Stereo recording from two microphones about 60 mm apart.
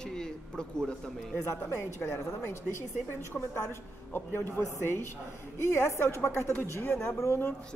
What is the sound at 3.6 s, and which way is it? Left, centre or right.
A woman's voice, left.